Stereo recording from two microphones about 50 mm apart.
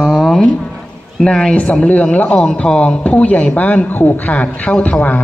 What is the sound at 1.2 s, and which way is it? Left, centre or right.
A man's voice, centre.